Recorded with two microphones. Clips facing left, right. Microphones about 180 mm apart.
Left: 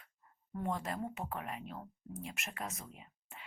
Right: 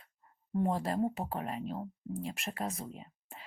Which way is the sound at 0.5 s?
35° right (ahead or behind).